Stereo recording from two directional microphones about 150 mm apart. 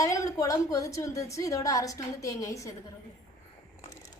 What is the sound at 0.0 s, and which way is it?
A woman's voice, 20° left (ahead or behind).